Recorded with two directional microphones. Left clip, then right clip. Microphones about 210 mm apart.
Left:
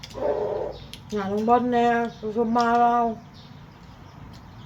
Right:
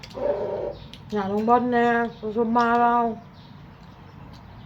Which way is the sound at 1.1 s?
Centre (ahead or behind).